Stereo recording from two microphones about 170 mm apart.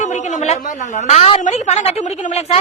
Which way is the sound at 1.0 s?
40° left (ahead or behind).